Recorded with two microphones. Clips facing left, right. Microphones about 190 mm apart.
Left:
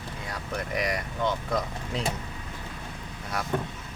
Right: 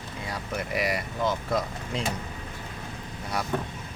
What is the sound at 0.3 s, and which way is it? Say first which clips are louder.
Speech: right 1 dB; 5° right (ahead or behind).